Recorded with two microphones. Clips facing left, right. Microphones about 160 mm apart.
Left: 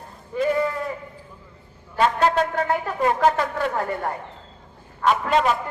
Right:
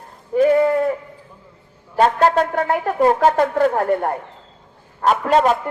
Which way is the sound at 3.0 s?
45° right (ahead or behind).